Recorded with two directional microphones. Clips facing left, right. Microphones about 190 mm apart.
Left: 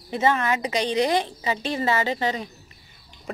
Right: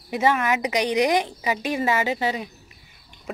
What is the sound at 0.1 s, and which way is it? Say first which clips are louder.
A woman's voice: right 1 dB; 10° right (ahead or behind).